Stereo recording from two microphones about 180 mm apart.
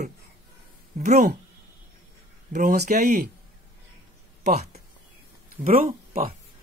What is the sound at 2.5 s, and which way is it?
Speech, 45° right (ahead or behind).